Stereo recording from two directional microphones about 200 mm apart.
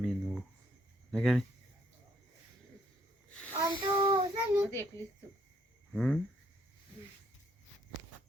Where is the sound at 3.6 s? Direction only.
25° right (ahead or behind).